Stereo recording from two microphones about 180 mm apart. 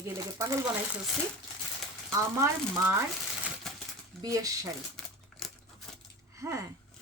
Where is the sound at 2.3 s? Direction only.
15° right (ahead or behind).